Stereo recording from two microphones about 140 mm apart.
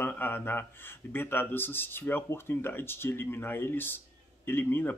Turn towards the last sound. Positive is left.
turn(degrees=15)  # may be behind; listen again after turning